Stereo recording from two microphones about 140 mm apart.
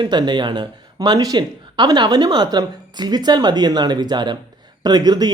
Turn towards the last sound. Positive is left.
turn(degrees=-30)  # may be behind; listen again after turning